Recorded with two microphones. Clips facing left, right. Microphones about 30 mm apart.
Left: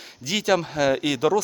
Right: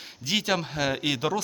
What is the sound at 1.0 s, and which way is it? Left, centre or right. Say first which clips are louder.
Speech: left 5 dB; centre.